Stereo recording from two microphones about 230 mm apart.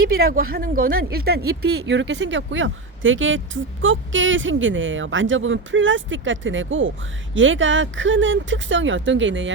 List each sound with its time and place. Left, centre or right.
0.2 s speech: right